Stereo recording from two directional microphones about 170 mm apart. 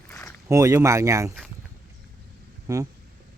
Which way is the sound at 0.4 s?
20° right (ahead or behind).